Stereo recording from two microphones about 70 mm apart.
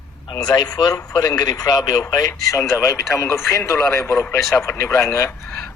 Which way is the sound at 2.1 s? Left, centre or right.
Left.